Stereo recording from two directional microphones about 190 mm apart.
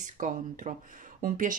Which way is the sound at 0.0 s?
40° right (ahead or behind).